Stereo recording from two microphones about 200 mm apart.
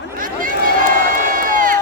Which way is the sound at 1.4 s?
45° right (ahead or behind).